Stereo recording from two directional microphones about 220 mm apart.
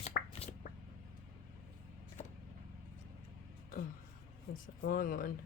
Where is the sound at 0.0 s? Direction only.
30° left (ahead or behind).